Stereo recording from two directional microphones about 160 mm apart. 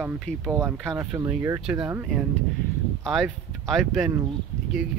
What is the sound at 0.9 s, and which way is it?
Speech, 15° right (ahead or behind).